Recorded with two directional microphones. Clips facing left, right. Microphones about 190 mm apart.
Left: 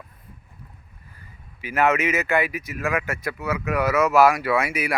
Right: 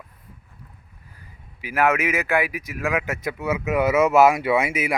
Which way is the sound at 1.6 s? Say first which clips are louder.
Even; 10° right (ahead or behind).